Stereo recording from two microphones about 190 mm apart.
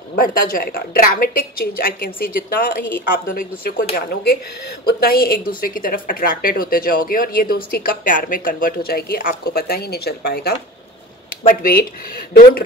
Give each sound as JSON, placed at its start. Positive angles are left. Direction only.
{"t": 0.2, "sound": "speech", "side_deg": 50}